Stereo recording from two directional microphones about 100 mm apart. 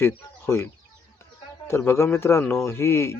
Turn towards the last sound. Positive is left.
turn(degrees=25)  # may be behind; listen again after turning